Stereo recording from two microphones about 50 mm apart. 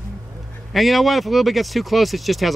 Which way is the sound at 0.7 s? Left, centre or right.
Centre.